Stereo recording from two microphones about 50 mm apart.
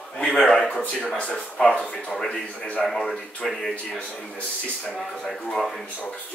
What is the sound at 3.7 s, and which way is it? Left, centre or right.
Speech, left.